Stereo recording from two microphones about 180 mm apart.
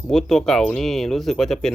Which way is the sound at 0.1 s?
Centre (ahead or behind).